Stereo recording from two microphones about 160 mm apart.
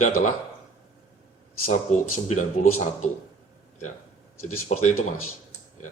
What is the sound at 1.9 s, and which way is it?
Speech, 50° left (ahead or behind).